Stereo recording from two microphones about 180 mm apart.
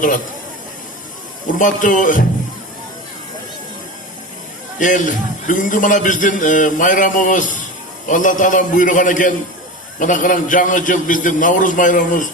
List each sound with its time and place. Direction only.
1.5 s a man's voice: 45° left (ahead or behind)
4.8 s a man's voice: 45° left (ahead or behind)